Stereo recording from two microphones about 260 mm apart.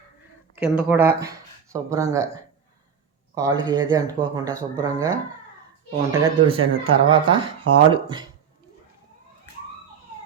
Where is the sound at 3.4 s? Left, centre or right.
Centre.